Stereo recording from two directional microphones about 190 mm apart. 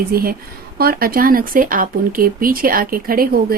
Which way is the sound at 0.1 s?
50° right (ahead or behind).